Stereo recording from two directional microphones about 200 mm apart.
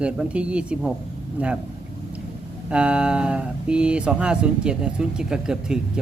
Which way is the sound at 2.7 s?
5° right (ahead or behind).